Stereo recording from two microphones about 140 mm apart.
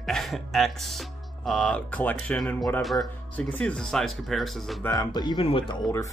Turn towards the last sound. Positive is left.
turn(degrees=40)  # may be behind; listen again after turning